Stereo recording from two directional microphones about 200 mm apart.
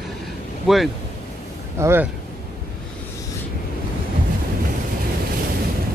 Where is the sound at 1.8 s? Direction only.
10° right (ahead or behind).